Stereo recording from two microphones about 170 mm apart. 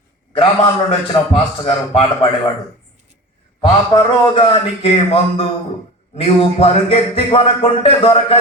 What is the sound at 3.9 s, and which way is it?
Speech, 30° left (ahead or behind).